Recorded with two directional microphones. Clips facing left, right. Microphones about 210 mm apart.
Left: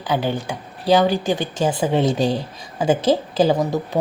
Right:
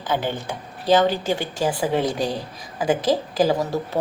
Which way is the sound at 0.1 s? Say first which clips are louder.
Left 3 dB; 15° left (ahead or behind).